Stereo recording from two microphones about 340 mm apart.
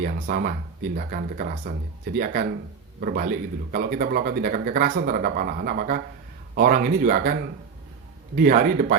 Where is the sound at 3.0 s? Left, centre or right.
Right.